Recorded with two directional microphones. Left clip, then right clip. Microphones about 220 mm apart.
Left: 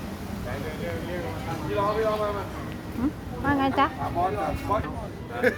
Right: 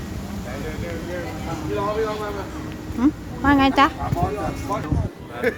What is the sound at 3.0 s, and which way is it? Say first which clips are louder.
Speech: right 9 dB; 35° right (ahead or behind).